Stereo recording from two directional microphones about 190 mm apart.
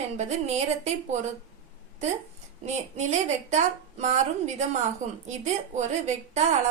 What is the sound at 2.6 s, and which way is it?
A woman's voice, 35° right (ahead or behind).